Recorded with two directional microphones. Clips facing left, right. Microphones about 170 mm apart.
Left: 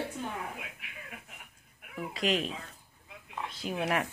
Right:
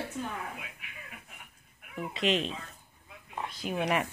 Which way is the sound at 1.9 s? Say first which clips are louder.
Right 1 dB; 5° left (ahead or behind).